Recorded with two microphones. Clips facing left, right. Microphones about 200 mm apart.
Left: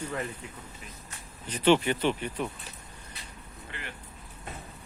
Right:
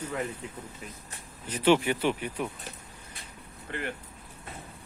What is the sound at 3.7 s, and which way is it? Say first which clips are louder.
Speech: right 9 dB; 50° right (ahead or behind).